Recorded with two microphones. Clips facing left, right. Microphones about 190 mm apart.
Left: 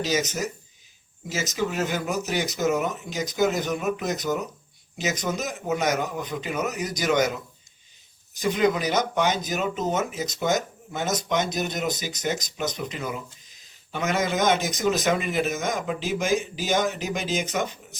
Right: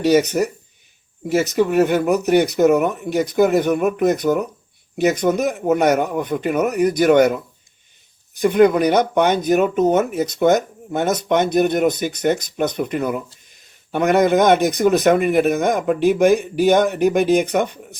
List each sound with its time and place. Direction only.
0.0 s speech: 60° right (ahead or behind)